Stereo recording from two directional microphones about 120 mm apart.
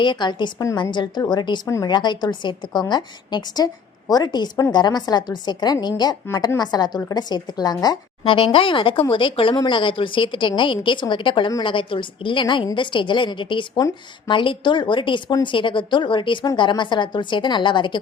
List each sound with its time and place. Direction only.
0.0 s a woman's voice: 40° left (ahead or behind)
8.2 s a woman's voice: 45° left (ahead or behind)